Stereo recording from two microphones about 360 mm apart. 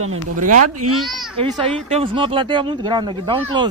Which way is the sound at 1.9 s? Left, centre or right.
Centre.